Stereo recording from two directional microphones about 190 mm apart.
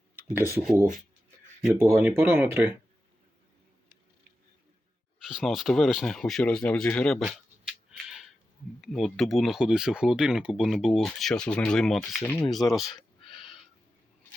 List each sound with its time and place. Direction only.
0.2 s speech: 10° right (ahead or behind)
5.2 s speech: centre (ahead or behind)